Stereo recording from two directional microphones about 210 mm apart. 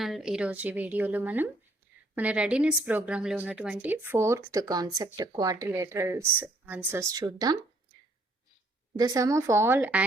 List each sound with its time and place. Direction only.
0.0 s a woman's voice: centre (ahead or behind); by 7.6 s 20° right (ahead or behind)
9.0 s a woman's voice: 15° right (ahead or behind)